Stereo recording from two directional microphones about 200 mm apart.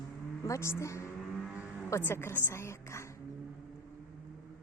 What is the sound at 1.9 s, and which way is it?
A woman's voice, 15° left (ahead or behind).